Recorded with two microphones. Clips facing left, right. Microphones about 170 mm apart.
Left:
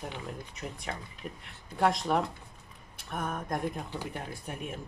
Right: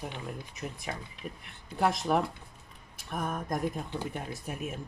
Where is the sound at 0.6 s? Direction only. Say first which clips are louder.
Right 1 dB; centre (ahead or behind).